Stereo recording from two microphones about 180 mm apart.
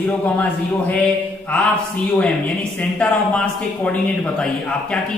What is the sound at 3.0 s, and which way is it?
A man's voice, 5° left (ahead or behind).